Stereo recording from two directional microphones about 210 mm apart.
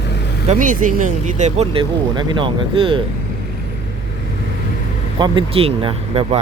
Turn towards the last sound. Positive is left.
turn(degrees=-25)  # may be behind; listen again after turning